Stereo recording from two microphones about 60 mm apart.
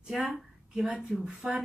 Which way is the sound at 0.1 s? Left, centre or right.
Centre.